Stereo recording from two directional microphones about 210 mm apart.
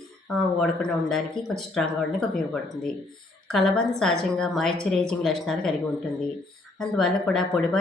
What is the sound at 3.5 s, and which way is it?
Speech, centre (ahead or behind).